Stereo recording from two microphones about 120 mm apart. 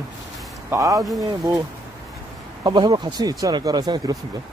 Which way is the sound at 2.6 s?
35° right (ahead or behind).